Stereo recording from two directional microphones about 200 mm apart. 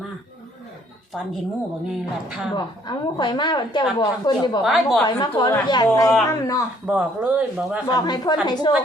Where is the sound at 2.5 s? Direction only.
20° left (ahead or behind).